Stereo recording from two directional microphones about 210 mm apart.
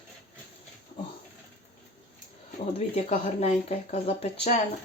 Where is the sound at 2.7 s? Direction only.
30° left (ahead or behind).